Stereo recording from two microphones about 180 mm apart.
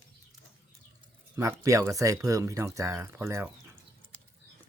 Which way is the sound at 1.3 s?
15° right (ahead or behind).